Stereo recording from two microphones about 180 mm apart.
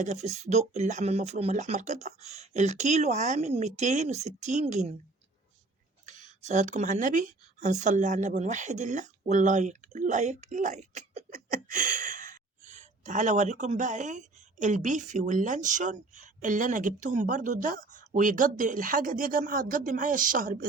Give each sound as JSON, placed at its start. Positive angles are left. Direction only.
{"t": 0.0, "sound": "speech", "side_deg": -40}
{"t": 6.1, "sound": "speech", "side_deg": -40}